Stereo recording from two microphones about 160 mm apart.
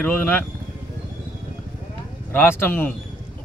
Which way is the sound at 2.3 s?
15° left (ahead or behind).